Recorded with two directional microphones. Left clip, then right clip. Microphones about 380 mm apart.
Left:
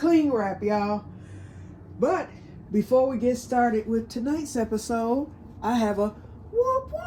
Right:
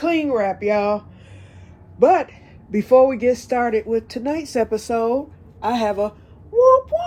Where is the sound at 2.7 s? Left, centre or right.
Centre.